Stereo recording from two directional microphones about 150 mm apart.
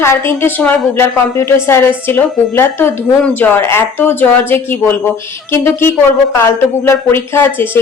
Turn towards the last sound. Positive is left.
turn(degrees=15)  # may be behind; listen again after turning